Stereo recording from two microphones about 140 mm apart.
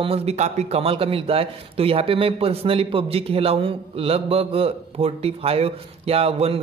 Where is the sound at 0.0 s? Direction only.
45° right (ahead or behind).